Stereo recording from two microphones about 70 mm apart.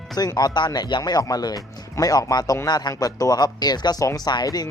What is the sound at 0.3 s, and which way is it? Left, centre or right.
Speech, left.